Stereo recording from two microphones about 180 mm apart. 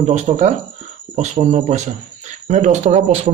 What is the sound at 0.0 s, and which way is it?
A man's voice, 40° right (ahead or behind).